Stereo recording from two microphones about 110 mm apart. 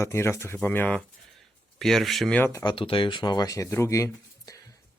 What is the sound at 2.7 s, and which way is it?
Speech, 55° left (ahead or behind).